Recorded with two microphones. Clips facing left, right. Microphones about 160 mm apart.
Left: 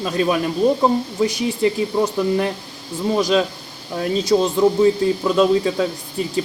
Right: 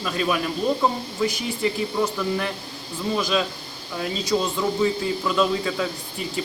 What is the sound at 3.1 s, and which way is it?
Speech, 40° left (ahead or behind).